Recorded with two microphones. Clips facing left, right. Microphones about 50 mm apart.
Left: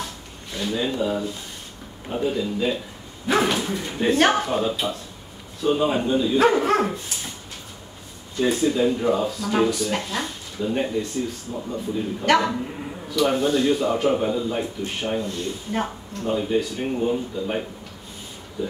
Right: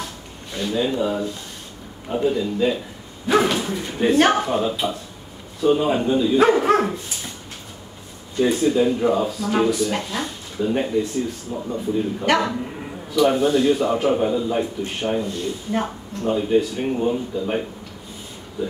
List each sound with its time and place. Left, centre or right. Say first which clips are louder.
0.6 s speech: right 3 dB; centre
8.4 s a man's voice: right 2 dB; centre
16.5 s speech: right 4 dB; centre
17.1 s speech: right 2 dB; centre